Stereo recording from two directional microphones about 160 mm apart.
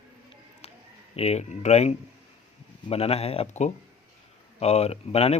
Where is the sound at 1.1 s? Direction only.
40° left (ahead or behind).